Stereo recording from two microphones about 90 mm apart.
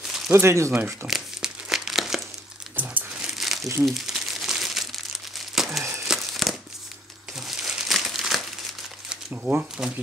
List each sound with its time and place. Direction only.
0.3 s speech: 30° right (ahead or behind)
1.0 s crumpling: 5° right (ahead or behind)
2.7 s crumpling: 20° right (ahead or behind); by 5.0 s 5° right (ahead or behind)
5.5 s a sound: 5° right (ahead or behind)
6.0 s crumpling: centre (ahead or behind)
9.1 s speech: 10° right (ahead or behind)